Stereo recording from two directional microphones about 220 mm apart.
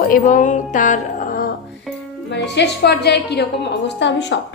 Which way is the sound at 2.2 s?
50° left (ahead or behind).